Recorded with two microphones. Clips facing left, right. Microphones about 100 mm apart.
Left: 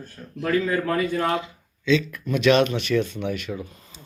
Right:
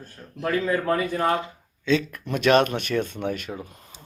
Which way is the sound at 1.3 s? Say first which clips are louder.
Right 1 dB; 45° right (ahead or behind).